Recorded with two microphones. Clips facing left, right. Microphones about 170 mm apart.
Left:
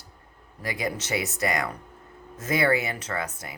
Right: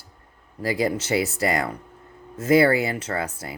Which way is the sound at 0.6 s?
30° right (ahead or behind).